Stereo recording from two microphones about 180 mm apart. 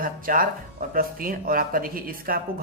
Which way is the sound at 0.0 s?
50° right (ahead or behind).